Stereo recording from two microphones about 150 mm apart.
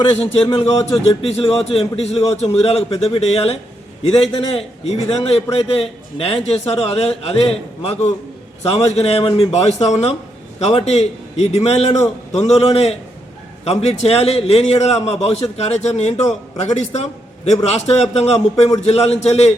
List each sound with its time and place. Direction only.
0.1 s a man's voice: 40° left (ahead or behind)